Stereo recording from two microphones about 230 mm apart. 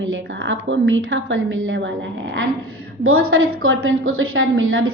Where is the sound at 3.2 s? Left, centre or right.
Right.